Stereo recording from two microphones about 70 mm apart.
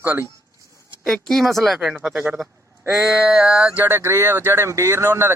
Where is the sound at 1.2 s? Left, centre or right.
Centre.